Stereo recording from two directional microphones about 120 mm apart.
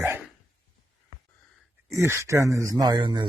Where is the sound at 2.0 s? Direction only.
25° right (ahead or behind); by 3.2 s 40° right (ahead or behind).